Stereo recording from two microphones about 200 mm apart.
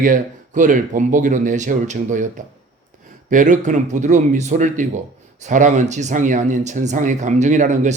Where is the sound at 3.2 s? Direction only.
40° right (ahead or behind).